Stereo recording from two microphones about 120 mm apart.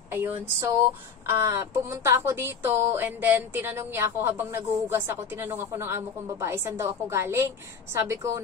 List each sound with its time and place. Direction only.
0.1 s speech: 20° right (ahead or behind)